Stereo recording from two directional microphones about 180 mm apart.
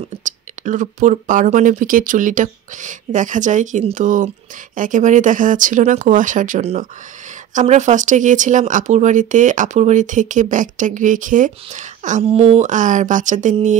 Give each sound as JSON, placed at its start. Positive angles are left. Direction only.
{"t": 0.2, "sound": "speech", "side_deg": -45}